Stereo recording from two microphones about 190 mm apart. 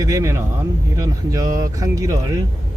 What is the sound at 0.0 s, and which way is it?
Speech, 15° right (ahead or behind).